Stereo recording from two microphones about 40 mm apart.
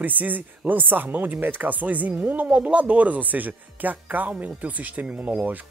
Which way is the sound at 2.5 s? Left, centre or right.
Right.